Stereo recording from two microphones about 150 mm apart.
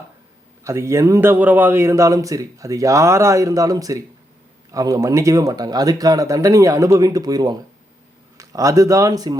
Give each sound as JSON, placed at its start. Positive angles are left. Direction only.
{"t": 0.6, "sound": "a man's voice", "side_deg": -20}